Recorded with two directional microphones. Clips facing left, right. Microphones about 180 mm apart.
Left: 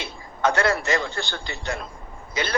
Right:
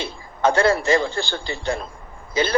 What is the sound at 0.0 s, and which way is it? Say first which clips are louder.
A man's voice: right 3 dB; 30° right (ahead or behind).